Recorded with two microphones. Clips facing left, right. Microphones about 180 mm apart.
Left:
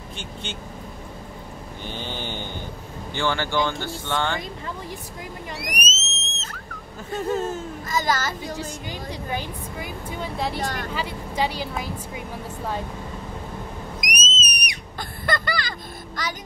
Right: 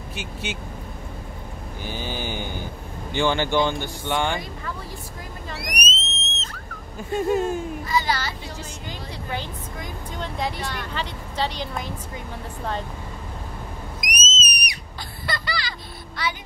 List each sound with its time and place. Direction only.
0.1 s speech: 5° right (ahead or behind)
1.8 s speech: 10° right (ahead or behind)
5.6 s a sound: centre (ahead or behind)
7.1 s speech: 15° right (ahead or behind)
7.8 s a child's voice: 45° left (ahead or behind)
9.3 s speech: 10° left (ahead or behind)
10.6 s a child's voice: 45° left (ahead or behind)
10.9 s speech: 10° left (ahead or behind)
14.0 s whistle: centre (ahead or behind)
15.0 s a sound: 50° left (ahead or behind)